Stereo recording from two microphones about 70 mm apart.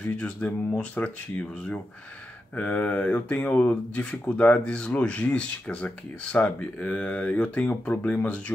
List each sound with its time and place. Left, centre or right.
0.0 s speech: centre